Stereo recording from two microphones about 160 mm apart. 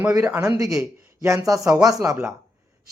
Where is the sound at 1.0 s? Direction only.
20° right (ahead or behind).